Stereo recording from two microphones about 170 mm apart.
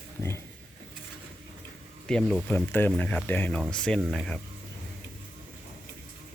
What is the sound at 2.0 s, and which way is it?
Speech, 5° left (ahead or behind).